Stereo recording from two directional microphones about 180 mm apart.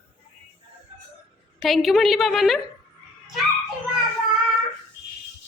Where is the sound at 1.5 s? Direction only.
Centre (ahead or behind).